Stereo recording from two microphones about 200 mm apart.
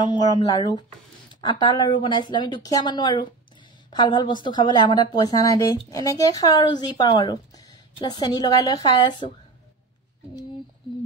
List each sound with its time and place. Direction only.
0.0 s speech: 20° left (ahead or behind)